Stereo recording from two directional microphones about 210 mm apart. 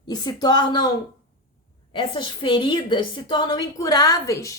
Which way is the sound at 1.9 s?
25° left (ahead or behind).